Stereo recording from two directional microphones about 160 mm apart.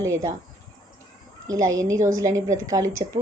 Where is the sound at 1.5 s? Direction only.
20° right (ahead or behind).